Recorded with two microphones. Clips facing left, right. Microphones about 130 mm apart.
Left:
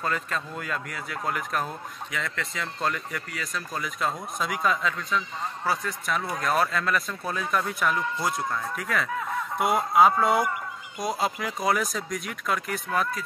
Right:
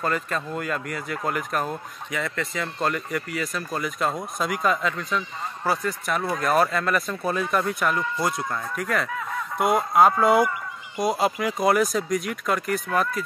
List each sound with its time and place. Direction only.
0.0 s speech: centre (ahead or behind)